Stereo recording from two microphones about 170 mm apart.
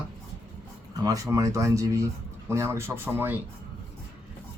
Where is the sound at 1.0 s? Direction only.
20° right (ahead or behind).